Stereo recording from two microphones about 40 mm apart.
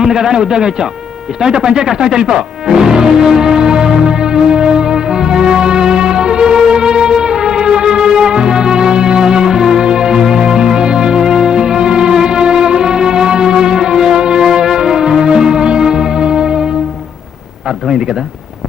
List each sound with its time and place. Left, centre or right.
0.0 s a man's voice: centre
1.4 s music: centre